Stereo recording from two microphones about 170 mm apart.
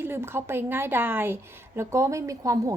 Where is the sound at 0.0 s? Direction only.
15° right (ahead or behind).